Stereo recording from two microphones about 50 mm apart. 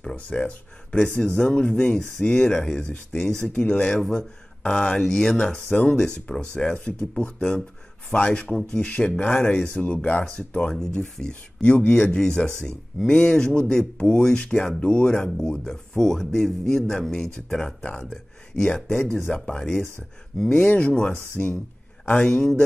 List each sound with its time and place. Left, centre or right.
0.0 s speech: left
3.4 s speech: left
9.8 s speech: centre
11.6 s speech: left
21.4 s speech: left
22.2 s speech: centre